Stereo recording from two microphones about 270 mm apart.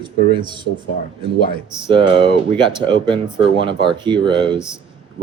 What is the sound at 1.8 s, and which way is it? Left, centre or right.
Speech, centre.